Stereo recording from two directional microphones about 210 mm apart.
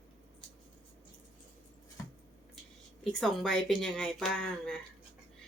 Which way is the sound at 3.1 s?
Centre (ahead or behind).